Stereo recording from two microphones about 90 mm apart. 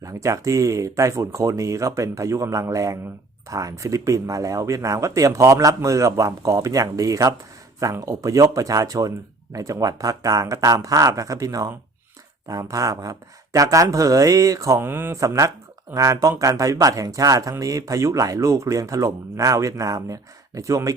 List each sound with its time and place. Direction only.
0.0 s speech: 35° right (ahead or behind)
14.8 s speech: 25° right (ahead or behind)
15.2 s speech: 35° right (ahead or behind)